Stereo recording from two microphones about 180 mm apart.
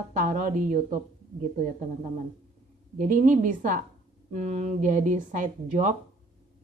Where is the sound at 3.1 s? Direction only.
45° right (ahead or behind).